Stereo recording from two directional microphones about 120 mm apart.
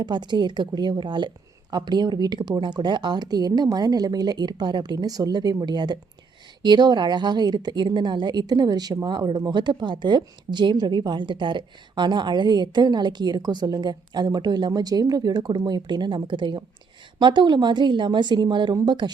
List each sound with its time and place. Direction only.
0.0 s a woman's voice: 40° right (ahead or behind)